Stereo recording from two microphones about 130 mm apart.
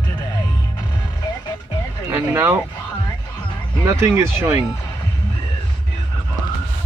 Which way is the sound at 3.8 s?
20° right (ahead or behind).